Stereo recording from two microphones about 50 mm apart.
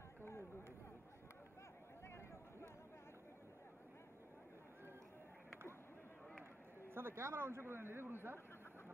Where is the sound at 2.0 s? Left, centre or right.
Left.